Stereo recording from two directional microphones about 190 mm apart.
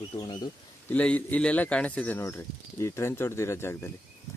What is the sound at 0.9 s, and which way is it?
Speech, 5° left (ahead or behind).